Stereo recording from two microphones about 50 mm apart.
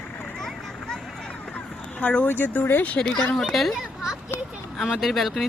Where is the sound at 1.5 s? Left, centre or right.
Left.